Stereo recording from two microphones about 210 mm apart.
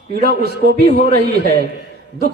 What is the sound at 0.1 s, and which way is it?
A man's voice, 50° right (ahead or behind).